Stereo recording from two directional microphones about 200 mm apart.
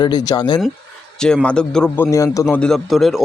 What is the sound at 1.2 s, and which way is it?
A man's voice, 5° left (ahead or behind).